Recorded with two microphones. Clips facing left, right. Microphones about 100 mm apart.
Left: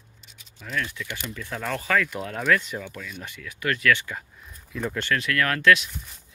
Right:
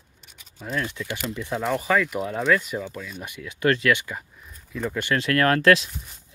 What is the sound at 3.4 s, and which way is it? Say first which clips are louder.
Speech: right 7 dB; 30° right (ahead or behind).